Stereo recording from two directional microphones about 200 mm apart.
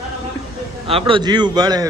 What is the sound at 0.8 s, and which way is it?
A man's voice, 25° right (ahead or behind).